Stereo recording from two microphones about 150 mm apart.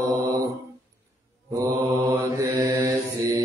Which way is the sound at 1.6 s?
20° right (ahead or behind).